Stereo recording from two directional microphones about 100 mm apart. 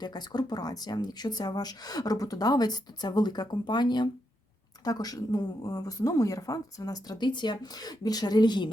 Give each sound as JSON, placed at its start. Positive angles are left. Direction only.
{"t": 0.0, "sound": "a woman's voice", "side_deg": 45}